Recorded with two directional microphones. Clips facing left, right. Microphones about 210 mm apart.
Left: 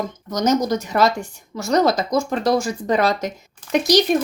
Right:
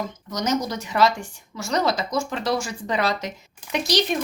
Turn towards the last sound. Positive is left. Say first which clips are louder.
# left 7 dB
turn(degrees=45)  # may be behind; listen again after turning